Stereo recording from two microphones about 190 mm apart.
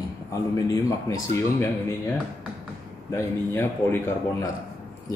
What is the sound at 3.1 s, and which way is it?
A man's voice, 15° left (ahead or behind).